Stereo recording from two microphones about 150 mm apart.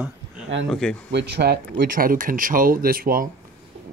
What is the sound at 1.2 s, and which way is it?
Speech, 90° right.